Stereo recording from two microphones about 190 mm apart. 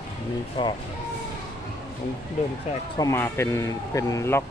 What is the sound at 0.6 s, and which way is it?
Speech, 25° left (ahead or behind).